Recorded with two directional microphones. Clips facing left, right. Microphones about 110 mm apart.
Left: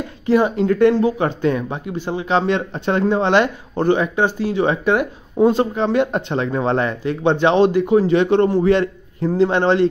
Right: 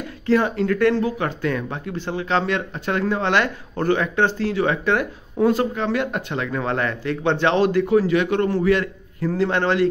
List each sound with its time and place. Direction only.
0.3 s a man's voice: 20° left (ahead or behind)